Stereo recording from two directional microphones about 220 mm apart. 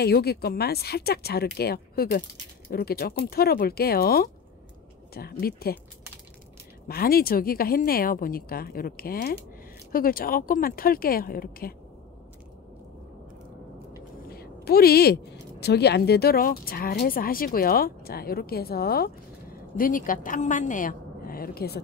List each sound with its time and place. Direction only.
0.0 s a woman's voice: 45° left (ahead or behind)
6.9 s a woman's voice: 45° left (ahead or behind)
14.3 s a sound: 45° left (ahead or behind)
15.6 s a woman's voice: 50° left (ahead or behind)